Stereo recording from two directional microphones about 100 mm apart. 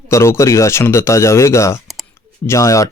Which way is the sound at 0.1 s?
30° left (ahead or behind).